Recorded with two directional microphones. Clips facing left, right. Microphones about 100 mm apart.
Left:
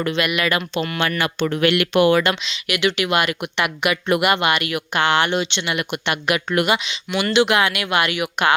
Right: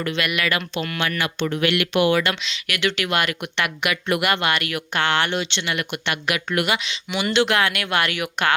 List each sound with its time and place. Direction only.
0.0 s speech: 25° left (ahead or behind)
1.4 s speech: 60° left (ahead or behind)
1.8 s speech: 45° left (ahead or behind)
2.4 s speech: 15° left (ahead or behind)
7.1 s speech: 15° right (ahead or behind)
7.3 s speech: 10° left (ahead or behind)